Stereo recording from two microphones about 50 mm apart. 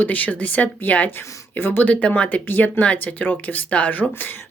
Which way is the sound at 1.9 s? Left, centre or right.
Left.